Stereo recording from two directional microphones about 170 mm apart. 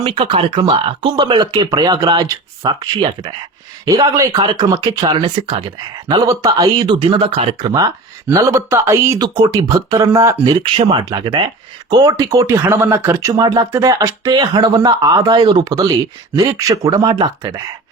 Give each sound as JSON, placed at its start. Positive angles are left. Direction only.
{"t": 0.0, "sound": "speech", "side_deg": -30}
{"t": 10.6, "sound": "speech", "side_deg": -30}